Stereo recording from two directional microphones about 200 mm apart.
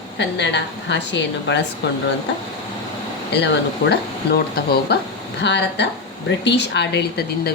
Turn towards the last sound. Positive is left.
turn(degrees=55)  # may be behind; listen again after turning